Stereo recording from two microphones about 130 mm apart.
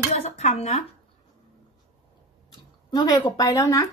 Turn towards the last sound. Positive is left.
turn(degrees=25)  # may be behind; listen again after turning